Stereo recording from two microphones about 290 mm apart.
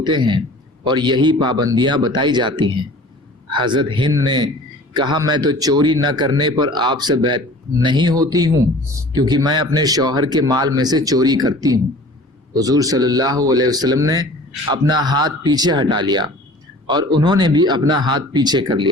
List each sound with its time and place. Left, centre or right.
0.0 s speech: centre